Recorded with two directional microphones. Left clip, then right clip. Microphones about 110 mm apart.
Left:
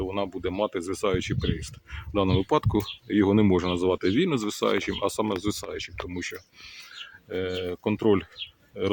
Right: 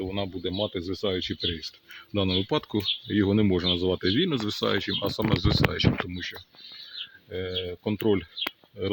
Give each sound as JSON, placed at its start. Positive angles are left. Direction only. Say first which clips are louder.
{"t": 0.0, "sound": "speech", "louder": "left 2 dB", "side_deg": 30}
{"t": 1.0, "sound": "speech", "louder": "left 1 dB", "side_deg": 30}
{"t": 7.3, "sound": "speech", "louder": "left 3 dB", "side_deg": 30}